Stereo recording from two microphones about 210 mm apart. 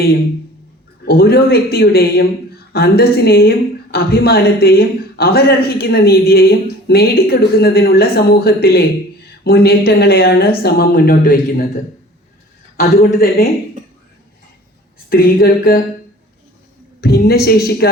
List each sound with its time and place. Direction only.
1.0 s a man's voice: 45° left (ahead or behind)
12.7 s a man's voice: 45° left (ahead or behind)
15.1 s a man's voice: 45° left (ahead or behind)
17.0 s a man's voice: 50° left (ahead or behind)